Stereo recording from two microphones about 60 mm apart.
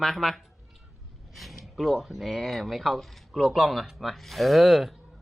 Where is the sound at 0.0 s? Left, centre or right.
Centre.